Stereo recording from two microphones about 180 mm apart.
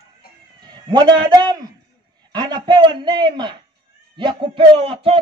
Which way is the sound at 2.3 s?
25° right (ahead or behind).